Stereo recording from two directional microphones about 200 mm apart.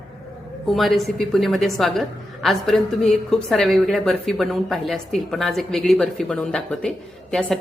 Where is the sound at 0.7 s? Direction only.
Centre (ahead or behind).